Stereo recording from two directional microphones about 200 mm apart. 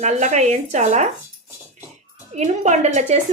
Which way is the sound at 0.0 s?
35° right (ahead or behind).